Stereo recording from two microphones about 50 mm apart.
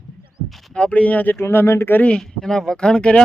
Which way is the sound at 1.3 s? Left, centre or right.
Left.